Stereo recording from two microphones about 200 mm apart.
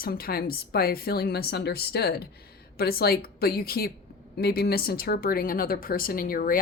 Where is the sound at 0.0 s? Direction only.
50° left (ahead or behind).